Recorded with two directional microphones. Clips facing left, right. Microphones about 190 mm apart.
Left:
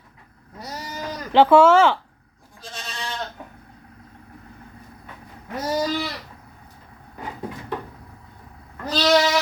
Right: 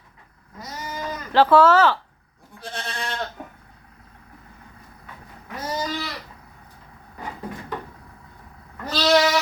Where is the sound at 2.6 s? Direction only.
60° right (ahead or behind).